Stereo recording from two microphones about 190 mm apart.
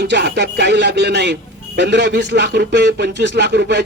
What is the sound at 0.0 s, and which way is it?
Speech, 60° right (ahead or behind).